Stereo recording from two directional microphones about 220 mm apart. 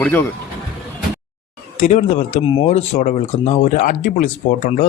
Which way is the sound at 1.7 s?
30° left (ahead or behind).